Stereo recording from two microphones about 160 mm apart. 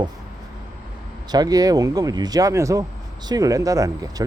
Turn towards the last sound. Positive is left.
turn(degrees=-20)  # may be behind; listen again after turning